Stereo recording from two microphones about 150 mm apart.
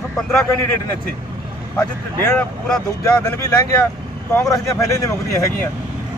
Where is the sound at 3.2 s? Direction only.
20° left (ahead or behind).